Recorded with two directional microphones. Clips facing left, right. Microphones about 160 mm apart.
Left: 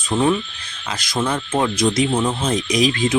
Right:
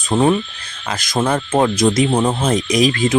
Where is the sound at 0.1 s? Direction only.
40° right (ahead or behind).